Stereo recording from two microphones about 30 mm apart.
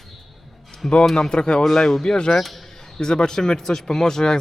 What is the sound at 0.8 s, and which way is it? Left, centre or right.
Speech, left.